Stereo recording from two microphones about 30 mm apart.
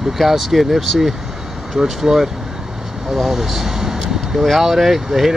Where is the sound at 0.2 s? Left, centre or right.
Centre.